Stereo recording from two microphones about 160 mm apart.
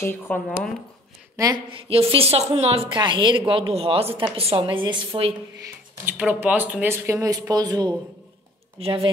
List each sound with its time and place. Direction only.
0.0 s speech: 15° left (ahead or behind)
1.3 s speech: 20° right (ahead or behind)
1.7 s speech: 35° right (ahead or behind)
6.0 s speech: 10° right (ahead or behind); by 9.1 s 35° right (ahead or behind)